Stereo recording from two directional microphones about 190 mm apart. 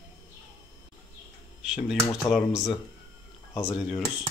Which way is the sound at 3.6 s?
5° right (ahead or behind).